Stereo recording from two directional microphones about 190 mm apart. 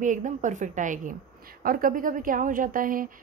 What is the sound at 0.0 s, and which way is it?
A woman's voice, 40° right (ahead or behind).